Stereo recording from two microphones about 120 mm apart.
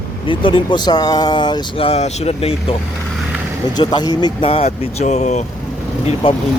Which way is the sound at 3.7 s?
35° left (ahead or behind).